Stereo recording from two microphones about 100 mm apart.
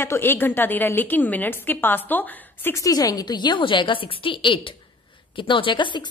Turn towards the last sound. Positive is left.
turn(degrees=50)  # may be behind; listen again after turning